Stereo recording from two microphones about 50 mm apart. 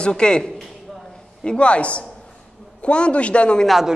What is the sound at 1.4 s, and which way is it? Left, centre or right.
Speech, left.